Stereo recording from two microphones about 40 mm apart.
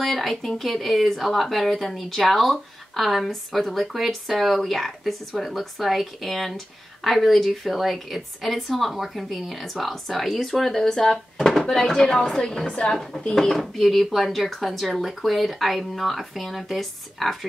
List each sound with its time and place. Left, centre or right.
0.0 s speech: centre
10.9 s a woman's voice: centre
12.6 s speech: left
13.3 s a woman's voice: centre